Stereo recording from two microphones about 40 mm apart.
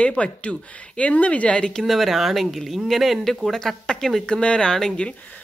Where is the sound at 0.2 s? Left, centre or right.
Left.